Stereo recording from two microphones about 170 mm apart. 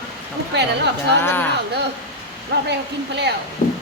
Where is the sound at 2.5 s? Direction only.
70° right (ahead or behind).